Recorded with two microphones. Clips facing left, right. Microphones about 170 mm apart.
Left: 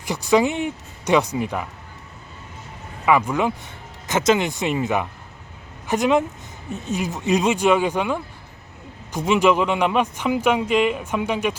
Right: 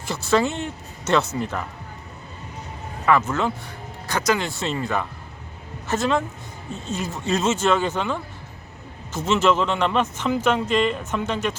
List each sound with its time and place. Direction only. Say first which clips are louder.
0.0 s a man's voice: left 3 dB; 15° left (ahead or behind)
3.1 s a man's voice: left 2 dB; 10° left (ahead or behind)